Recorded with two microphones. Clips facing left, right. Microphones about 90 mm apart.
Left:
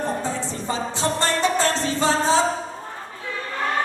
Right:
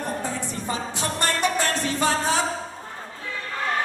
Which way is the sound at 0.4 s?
20° left (ahead or behind).